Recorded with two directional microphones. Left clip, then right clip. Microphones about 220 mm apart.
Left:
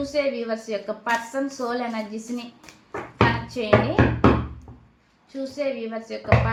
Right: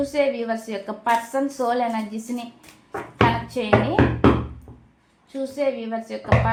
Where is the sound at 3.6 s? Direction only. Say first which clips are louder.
Right 2 dB; 35° right (ahead or behind).